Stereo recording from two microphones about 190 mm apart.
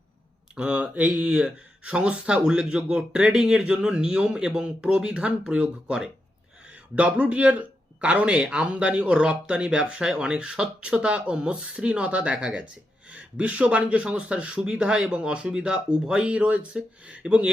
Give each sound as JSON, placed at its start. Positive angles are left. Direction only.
{"t": 0.5, "sound": "a man's voice", "side_deg": -5}